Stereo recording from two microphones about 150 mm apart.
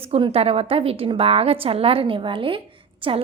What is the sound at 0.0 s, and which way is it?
A woman's voice, 40° right (ahead or behind).